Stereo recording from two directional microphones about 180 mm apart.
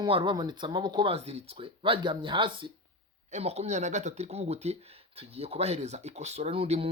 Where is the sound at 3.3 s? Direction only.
40° right (ahead or behind).